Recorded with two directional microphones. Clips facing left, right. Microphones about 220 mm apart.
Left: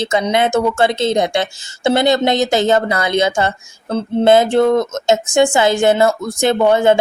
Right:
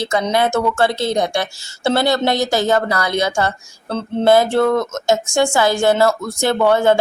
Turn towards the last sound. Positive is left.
turn(degrees=20)  # may be behind; listen again after turning